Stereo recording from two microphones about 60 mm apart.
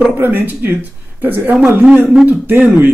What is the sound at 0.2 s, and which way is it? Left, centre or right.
Speech, right.